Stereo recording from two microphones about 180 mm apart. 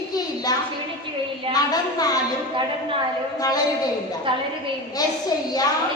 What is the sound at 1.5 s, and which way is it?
Speech, 20° left (ahead or behind).